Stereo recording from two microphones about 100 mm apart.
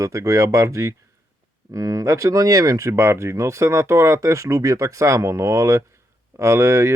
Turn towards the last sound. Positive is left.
turn(degrees=-25)  # may be behind; listen again after turning